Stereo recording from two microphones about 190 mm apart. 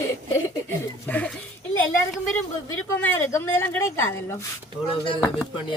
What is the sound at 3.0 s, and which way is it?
A woman's voice, 10° left (ahead or behind).